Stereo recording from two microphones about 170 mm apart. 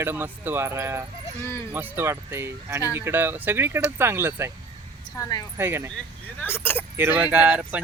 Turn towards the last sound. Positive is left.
turn(degrees=-5)  # may be behind; listen again after turning